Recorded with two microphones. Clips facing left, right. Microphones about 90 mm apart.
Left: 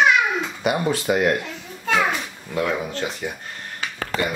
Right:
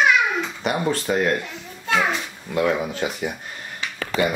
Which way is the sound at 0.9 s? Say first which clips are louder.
Left 1 dB; 10° left (ahead or behind).